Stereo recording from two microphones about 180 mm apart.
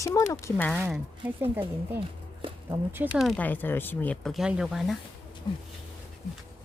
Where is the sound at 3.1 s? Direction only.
Centre (ahead or behind).